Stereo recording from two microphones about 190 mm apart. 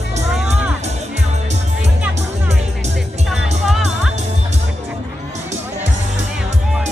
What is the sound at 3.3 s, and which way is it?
Music, centre (ahead or behind).